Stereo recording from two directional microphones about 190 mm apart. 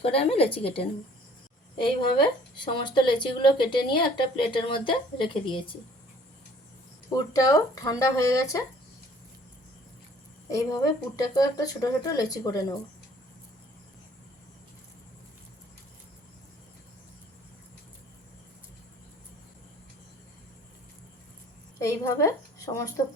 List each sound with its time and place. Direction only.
0.0 s speech: 30° left (ahead or behind)
7.1 s speech: 20° left (ahead or behind)
10.5 s speech: 20° left (ahead or behind)
21.8 s a woman's voice: 15° left (ahead or behind)